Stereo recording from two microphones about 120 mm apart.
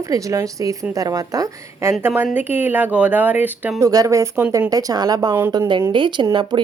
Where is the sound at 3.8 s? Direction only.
30° right (ahead or behind).